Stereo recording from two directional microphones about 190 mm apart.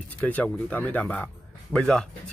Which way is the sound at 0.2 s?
10° left (ahead or behind).